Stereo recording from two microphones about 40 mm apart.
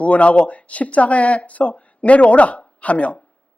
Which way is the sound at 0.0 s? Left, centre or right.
Left.